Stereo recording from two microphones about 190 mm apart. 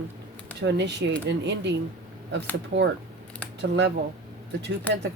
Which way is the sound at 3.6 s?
65° right (ahead or behind).